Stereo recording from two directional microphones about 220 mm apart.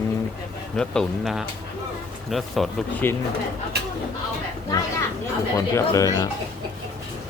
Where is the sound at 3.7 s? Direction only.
50° right (ahead or behind).